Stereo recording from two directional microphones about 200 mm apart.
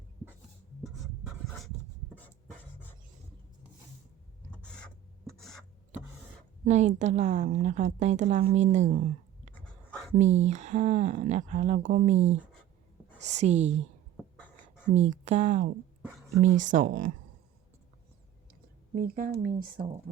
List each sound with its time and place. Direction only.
0.8 s writing: centre (ahead or behind)
4.5 s filing: 5° left (ahead or behind)
6.7 s speech: 35° right (ahead or behind)
10.2 s speech: 35° right (ahead or behind)
13.3 s speech: 35° right (ahead or behind)
14.3 s a sound: 5° left (ahead or behind)
14.9 s speech: 35° right (ahead or behind)
18.9 s speech: 45° right (ahead or behind)